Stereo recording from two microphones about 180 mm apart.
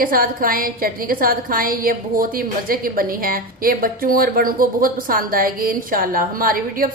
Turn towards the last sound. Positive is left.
turn(degrees=-50)  # may be behind; listen again after turning